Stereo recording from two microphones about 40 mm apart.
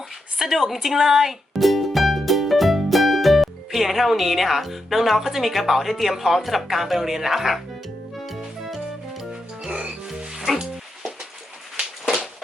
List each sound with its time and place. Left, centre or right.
0.3 s speech: centre
8.1 s music: centre
9.3 s music: centre